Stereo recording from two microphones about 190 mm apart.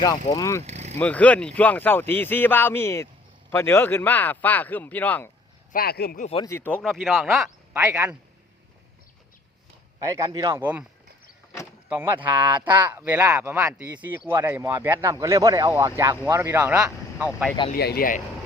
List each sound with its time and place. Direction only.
0.3 s speech: 15° left (ahead or behind)
0.6 s vehicle: 35° right (ahead or behind)
0.9 s speech: 10° left (ahead or behind)
5.7 s speech: 55° left (ahead or behind)
6.3 s speech: 15° left (ahead or behind)
6.8 s speech: centre (ahead or behind)
7.8 s speech: 15° right (ahead or behind)
10.2 s speech: 20° right (ahead or behind)
11.9 s speech: 10° right (ahead or behind)
17.7 s speech: 55° left (ahead or behind)